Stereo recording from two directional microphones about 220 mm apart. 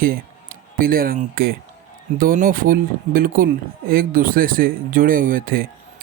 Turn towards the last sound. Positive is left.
turn(degrees=-40)  # may be behind; listen again after turning